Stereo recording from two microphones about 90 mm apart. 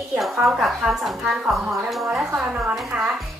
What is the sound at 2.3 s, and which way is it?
Speech, 15° right (ahead or behind).